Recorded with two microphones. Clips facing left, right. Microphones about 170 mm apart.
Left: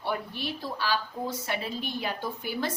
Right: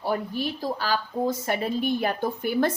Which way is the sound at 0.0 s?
40° right (ahead or behind).